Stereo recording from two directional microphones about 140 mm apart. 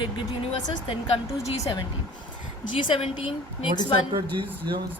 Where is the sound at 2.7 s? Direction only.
40° left (ahead or behind).